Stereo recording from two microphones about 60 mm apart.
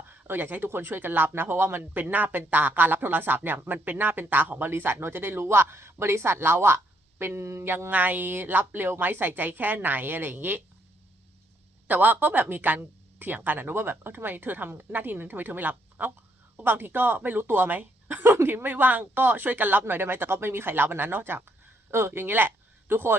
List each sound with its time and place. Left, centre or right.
0.1 s speech: right
11.9 s speech: right